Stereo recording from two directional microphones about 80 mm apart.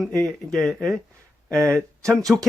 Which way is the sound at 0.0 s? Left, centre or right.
Centre.